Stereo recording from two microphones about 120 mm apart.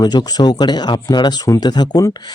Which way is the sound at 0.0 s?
35° left (ahead or behind).